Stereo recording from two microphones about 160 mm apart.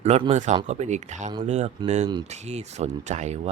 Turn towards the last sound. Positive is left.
turn(degrees=-45)  # may be behind; listen again after turning